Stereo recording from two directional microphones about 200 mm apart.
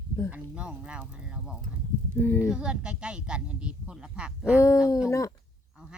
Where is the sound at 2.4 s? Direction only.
5° right (ahead or behind).